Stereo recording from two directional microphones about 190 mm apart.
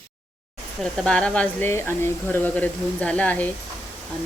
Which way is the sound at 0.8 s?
5° left (ahead or behind).